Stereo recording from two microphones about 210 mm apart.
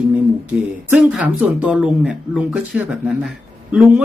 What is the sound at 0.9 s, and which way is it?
Speech, 5° right (ahead or behind).